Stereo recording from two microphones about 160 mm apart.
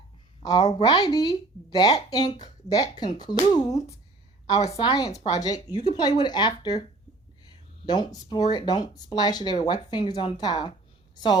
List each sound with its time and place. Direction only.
0.4 s speech: 25° left (ahead or behind)
7.9 s a woman's voice: 25° left (ahead or behind)